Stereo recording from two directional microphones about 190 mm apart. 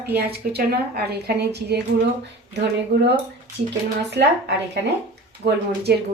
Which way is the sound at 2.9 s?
60° right (ahead or behind).